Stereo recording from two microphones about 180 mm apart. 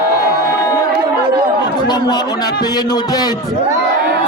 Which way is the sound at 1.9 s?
25° left (ahead or behind).